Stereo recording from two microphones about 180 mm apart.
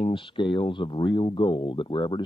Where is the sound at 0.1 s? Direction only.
30° left (ahead or behind).